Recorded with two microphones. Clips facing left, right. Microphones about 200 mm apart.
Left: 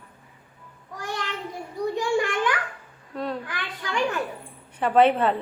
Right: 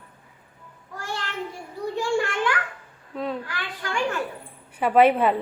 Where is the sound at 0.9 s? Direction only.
15° left (ahead or behind).